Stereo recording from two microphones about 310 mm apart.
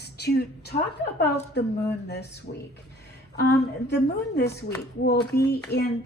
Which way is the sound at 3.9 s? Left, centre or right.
Left.